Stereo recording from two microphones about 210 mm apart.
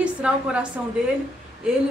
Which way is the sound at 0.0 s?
5° right (ahead or behind).